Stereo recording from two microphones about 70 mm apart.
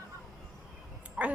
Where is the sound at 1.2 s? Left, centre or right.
Centre.